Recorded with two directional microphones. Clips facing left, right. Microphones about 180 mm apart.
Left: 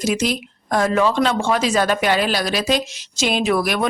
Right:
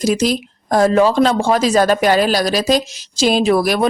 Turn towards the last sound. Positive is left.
turn(degrees=-35)  # may be behind; listen again after turning